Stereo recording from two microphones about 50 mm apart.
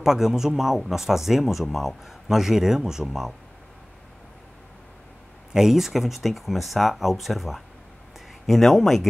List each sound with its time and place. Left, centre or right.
0.0 s speech: centre
5.5 s speech: centre